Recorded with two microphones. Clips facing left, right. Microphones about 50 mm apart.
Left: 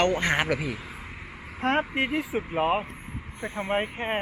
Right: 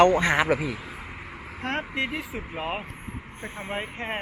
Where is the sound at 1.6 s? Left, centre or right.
Centre.